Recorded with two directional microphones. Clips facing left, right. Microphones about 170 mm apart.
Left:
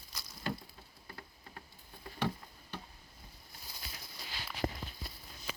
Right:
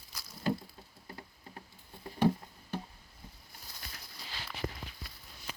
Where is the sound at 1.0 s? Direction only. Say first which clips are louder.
Right 3 dB; 25° right (ahead or behind).